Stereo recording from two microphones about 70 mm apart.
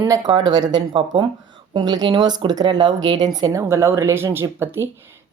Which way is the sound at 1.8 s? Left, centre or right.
Right.